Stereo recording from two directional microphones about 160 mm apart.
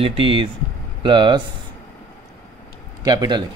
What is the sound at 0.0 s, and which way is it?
Speech, 35° right (ahead or behind).